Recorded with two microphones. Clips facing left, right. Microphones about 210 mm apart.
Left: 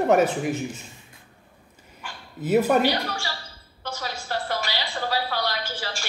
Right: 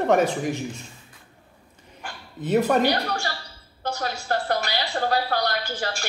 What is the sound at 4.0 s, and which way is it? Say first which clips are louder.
A woman's voice: right 3 dB; 45° right (ahead or behind).